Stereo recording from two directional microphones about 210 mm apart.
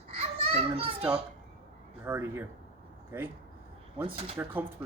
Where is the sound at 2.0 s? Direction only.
10° right (ahead or behind).